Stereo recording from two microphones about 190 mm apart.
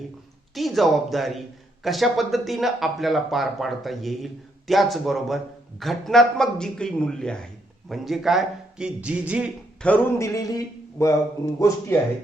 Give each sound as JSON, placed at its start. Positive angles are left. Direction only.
{"t": 0.5, "sound": "a man's voice", "side_deg": 0}
{"t": 9.8, "sound": "speech", "side_deg": 10}